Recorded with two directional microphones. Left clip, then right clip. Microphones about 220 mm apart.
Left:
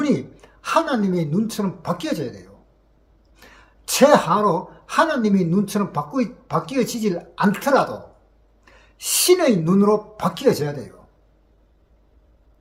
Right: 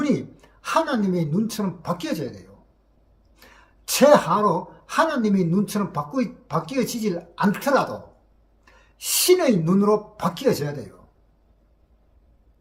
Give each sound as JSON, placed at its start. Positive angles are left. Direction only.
{"t": 0.0, "sound": "a woman's voice", "side_deg": 5}